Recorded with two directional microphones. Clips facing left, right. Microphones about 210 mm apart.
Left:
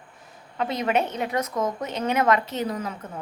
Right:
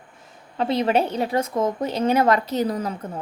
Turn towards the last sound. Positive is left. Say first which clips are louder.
# right 5 dB
turn(degrees=-35)  # may be behind; listen again after turning